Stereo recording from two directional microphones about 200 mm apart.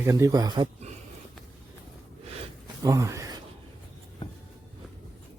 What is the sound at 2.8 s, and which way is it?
Speech, 15° right (ahead or behind).